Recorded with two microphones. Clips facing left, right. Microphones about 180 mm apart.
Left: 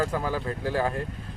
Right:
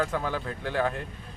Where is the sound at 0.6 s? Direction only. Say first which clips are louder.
Left 1 dB; 35° left (ahead or behind).